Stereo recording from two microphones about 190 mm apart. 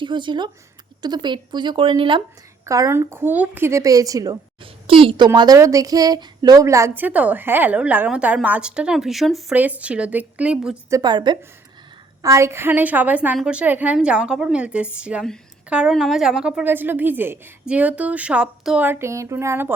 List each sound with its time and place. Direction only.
0.0 s speech: 25° right (ahead or behind); by 10.8 s 5° right (ahead or behind)
10.8 s speech: 20° right (ahead or behind)